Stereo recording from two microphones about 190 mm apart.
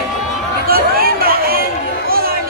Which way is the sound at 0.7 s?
50° right (ahead or behind).